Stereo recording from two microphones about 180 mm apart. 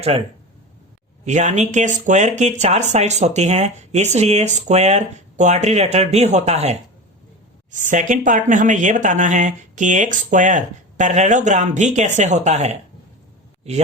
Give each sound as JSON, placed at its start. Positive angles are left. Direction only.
{"t": 1.2, "sound": "a woman's voice", "side_deg": -40}